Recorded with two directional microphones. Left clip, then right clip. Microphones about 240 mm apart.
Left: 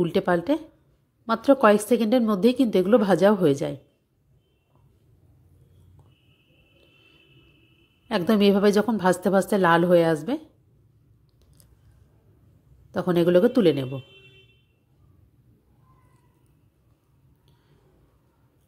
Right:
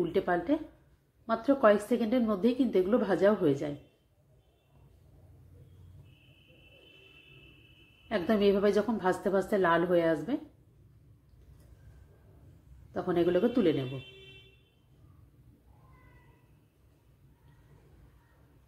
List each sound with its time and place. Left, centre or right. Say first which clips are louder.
0.0 s a woman's voice: left 6 dB; left
8.1 s a woman's voice: left 6 dB; left
12.9 s a woman's voice: left 8 dB; left